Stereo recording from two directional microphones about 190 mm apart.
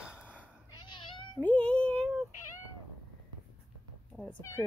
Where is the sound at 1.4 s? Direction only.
5° left (ahead or behind).